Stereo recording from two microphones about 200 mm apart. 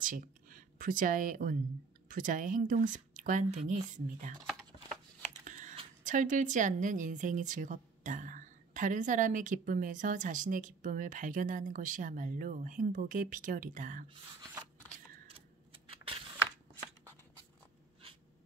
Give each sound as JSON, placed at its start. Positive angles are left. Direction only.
{"t": 0.0, "sound": "speech", "side_deg": -45}
{"t": 5.4, "sound": "speech", "side_deg": -40}
{"t": 15.2, "sound": "a sound", "side_deg": -30}